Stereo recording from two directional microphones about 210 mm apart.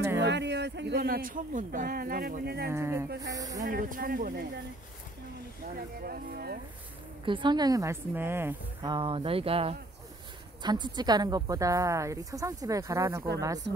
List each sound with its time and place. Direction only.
0.2 s speech: 55° right (ahead or behind)
2.7 s a woman's voice: 10° right (ahead or behind)
3.6 s speech: 40° right (ahead or behind)
6.0 s speech: 45° right (ahead or behind)
7.2 s a woman's voice: 20° right (ahead or behind)
8.9 s a woman's voice: 25° right (ahead or behind)